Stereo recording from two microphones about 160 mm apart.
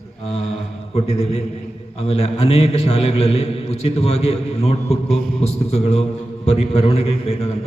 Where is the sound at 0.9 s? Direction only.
40° left (ahead or behind).